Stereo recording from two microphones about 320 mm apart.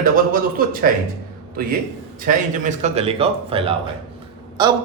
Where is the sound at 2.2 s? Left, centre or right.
Right.